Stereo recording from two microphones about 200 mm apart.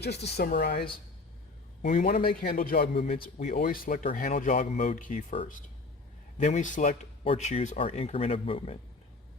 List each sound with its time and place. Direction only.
0.0 s a man's voice: 55° left (ahead or behind)
1.8 s a man's voice: 45° left (ahead or behind)
6.3 s speech: 35° left (ahead or behind)